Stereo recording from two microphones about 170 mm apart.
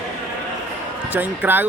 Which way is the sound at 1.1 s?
10° right (ahead or behind).